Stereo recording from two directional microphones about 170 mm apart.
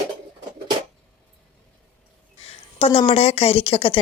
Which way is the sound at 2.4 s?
35° left (ahead or behind).